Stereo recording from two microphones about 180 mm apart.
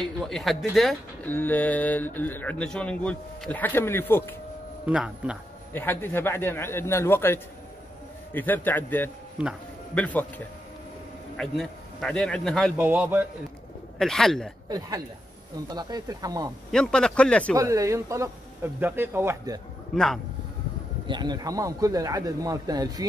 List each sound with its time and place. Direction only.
0.0 s speech: centre (ahead or behind)
4.8 s speech: 5° right (ahead or behind)
5.7 s a man's voice: 10° left (ahead or behind)
12.7 s speech: 10° right (ahead or behind)
13.9 s a man's voice: centre (ahead or behind)
15.5 s a man's voice: 20° right (ahead or behind)
16.7 s a man's voice: 5° left (ahead or behind)
17.6 s speech: 15° right (ahead or behind)
21.1 s a man's voice: 25° right (ahead or behind)